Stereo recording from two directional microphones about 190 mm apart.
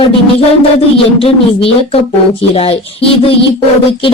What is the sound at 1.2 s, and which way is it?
Speech, 30° left (ahead or behind).